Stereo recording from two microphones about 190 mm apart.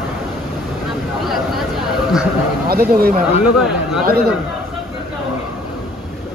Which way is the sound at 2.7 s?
50° right (ahead or behind).